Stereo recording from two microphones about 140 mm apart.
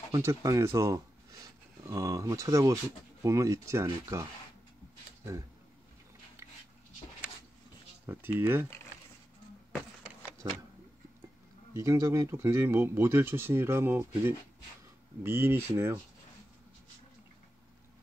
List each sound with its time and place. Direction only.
0.1 s speech: 20° right (ahead or behind)
8.1 s speech: 15° right (ahead or behind)
10.4 s speech: 25° right (ahead or behind)
11.7 s speech: 20° right (ahead or behind)